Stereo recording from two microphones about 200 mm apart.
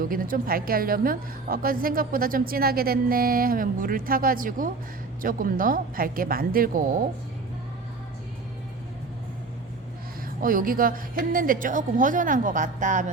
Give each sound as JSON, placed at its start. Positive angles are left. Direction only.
{"t": 0.0, "sound": "a woman's voice", "side_deg": -45}
{"t": 10.4, "sound": "a woman's voice", "side_deg": -45}